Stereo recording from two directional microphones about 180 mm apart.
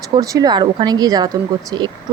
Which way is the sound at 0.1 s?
20° right (ahead or behind).